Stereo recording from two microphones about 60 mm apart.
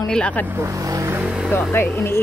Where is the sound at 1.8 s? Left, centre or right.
Left.